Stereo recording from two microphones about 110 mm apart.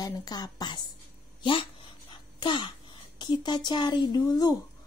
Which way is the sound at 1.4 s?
50° left (ahead or behind).